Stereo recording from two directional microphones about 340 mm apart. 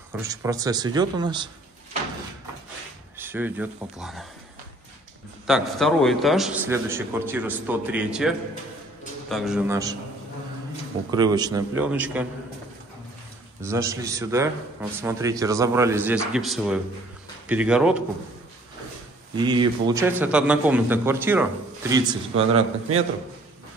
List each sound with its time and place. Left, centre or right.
0.1 s a man's voice: centre
3.2 s a man's voice: centre
5.5 s a man's voice: centre
11.1 s a man's voice: centre
13.6 s a man's voice: centre
19.3 s a man's voice: centre